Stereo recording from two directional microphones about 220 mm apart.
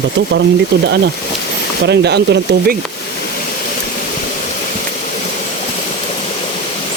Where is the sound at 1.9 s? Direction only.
50° right (ahead or behind).